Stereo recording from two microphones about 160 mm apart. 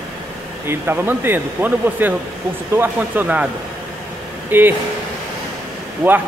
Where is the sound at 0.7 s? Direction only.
15° right (ahead or behind).